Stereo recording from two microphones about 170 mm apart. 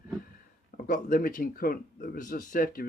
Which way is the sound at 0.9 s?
55° left (ahead or behind).